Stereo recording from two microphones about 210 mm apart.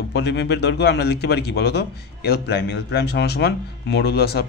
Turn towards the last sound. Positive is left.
turn(degrees=50)  # may be behind; listen again after turning